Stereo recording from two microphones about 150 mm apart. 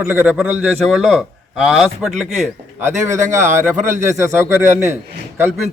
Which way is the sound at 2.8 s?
15° right (ahead or behind).